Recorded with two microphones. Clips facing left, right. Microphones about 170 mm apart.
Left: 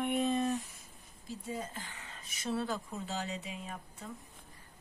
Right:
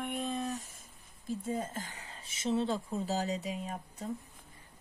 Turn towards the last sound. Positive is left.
turn(degrees=-40)  # may be behind; listen again after turning